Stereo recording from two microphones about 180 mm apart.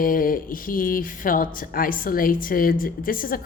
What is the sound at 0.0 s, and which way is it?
A woman's voice, 50° left (ahead or behind).